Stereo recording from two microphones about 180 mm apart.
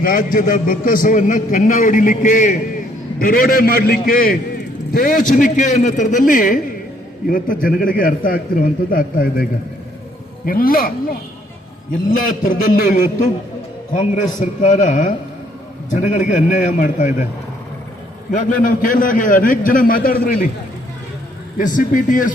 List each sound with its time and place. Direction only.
0.0 s a man's voice: 50° left (ahead or behind)
18.3 s a man's voice: 50° left (ahead or behind)
21.6 s a man's voice: 45° left (ahead or behind)